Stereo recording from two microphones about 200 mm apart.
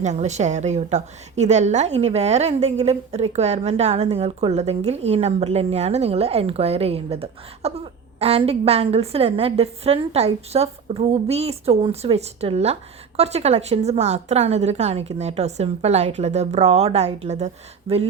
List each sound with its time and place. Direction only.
0.0 s a woman's voice: 35° right (ahead or behind)